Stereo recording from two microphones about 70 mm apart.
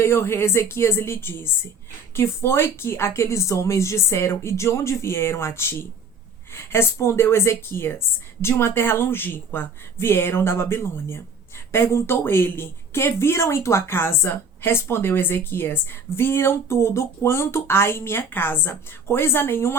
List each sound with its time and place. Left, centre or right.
0.0 s speech: left